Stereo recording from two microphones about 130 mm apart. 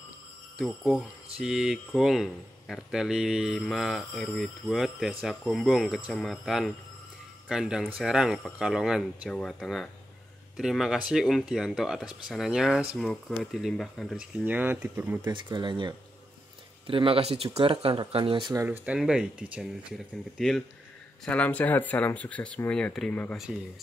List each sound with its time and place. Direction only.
0.6 s speech: 5° right (ahead or behind)
15.2 s speech: 35° right (ahead or behind)
18.5 s speech: 20° right (ahead or behind)
18.9 s speech: 5° right (ahead or behind)
21.3 s speech: 10° left (ahead or behind)